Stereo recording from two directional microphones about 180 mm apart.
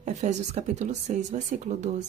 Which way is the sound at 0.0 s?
40° right (ahead or behind).